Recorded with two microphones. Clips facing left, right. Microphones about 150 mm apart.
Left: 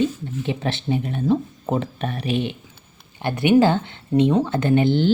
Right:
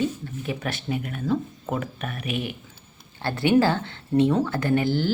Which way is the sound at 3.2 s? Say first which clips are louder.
Left 4 dB; 20° left (ahead or behind).